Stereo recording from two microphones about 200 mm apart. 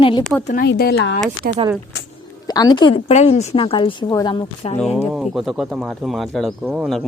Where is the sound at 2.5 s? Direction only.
20° left (ahead or behind).